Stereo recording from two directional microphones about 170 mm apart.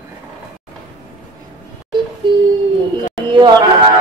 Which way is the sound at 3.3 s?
25° right (ahead or behind).